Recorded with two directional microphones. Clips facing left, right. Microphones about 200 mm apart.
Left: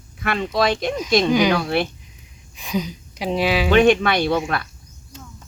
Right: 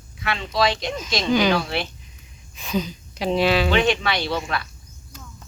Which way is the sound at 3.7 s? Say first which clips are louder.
Left 6 dB; 50° left (ahead or behind).